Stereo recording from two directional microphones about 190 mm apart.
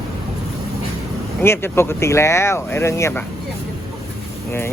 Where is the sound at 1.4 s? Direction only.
10° left (ahead or behind).